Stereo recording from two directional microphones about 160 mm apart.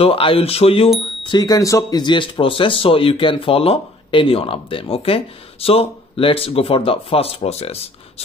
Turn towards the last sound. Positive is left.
turn(degrees=40)  # may be behind; listen again after turning